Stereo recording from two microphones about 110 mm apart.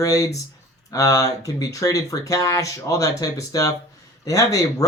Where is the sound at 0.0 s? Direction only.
30° left (ahead or behind).